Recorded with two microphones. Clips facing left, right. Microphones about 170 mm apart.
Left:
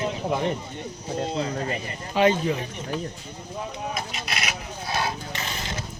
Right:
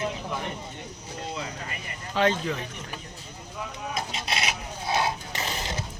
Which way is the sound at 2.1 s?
10° left (ahead or behind).